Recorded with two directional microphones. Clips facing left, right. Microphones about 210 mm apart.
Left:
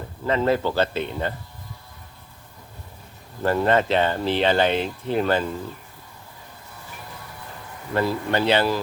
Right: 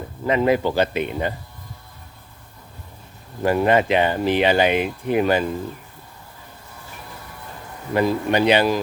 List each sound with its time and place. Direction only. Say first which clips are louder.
0.3 s speech: right 3 dB; 15° right (ahead or behind)
3.4 s speech: right 2 dB; 15° right (ahead or behind)
7.9 s speech: right 4 dB; 15° right (ahead or behind)